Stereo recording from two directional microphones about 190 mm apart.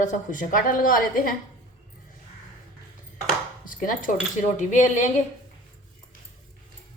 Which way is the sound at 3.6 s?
45° left (ahead or behind).